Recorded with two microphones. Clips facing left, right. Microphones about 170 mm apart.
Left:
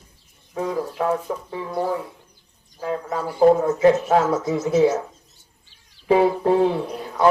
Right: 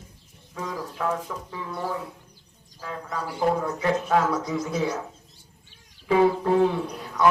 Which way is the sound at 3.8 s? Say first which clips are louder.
Left 6 dB; 25° left (ahead or behind).